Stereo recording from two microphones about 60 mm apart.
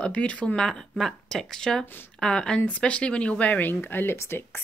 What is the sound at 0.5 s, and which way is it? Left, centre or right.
Speech, centre.